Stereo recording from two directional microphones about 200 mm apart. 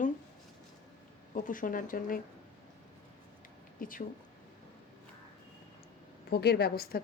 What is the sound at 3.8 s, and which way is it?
Speech, 45° left (ahead or behind).